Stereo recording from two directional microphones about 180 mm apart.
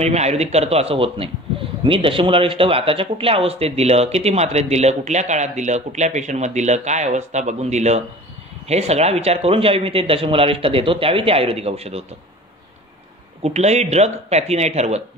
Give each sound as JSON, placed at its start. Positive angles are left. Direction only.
{"t": 0.0, "sound": "speech", "side_deg": -35}
{"t": 13.4, "sound": "speech", "side_deg": -35}